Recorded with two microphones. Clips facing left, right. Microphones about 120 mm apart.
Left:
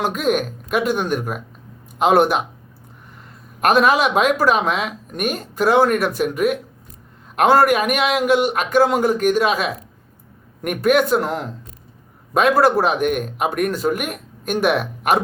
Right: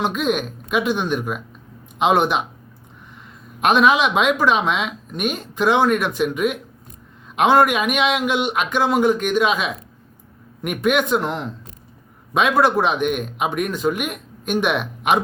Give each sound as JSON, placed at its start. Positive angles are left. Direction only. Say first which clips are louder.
{"t": 0.0, "sound": "speech", "louder": "left 1 dB", "side_deg": 45}
{"t": 3.6, "sound": "speech", "louder": "left 1 dB", "side_deg": 40}